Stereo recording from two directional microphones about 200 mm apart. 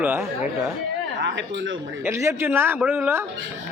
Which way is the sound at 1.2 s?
65° right (ahead or behind).